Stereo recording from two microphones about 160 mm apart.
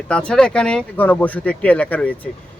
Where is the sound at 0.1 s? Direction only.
5° left (ahead or behind).